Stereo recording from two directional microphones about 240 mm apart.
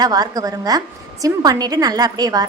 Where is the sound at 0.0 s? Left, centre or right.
Centre.